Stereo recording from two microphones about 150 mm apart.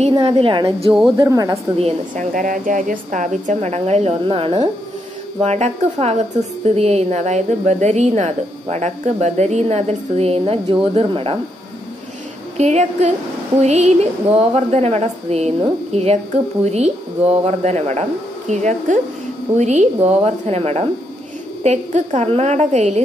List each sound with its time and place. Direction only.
0.2 s a woman's voice: 35° right (ahead or behind)
1.1 s speech: 20° right (ahead or behind)
1.8 s a woman's voice: 45° right (ahead or behind)
2.3 s a woman's voice: 60° right (ahead or behind); by 4.6 s 35° right (ahead or behind)
5.4 s a woman's voice: 50° right (ahead or behind)
12.5 s a woman's voice: 50° right (ahead or behind)